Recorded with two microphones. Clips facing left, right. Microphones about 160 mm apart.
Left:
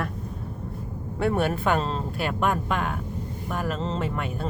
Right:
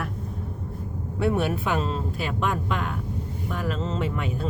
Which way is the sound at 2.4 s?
50° left (ahead or behind).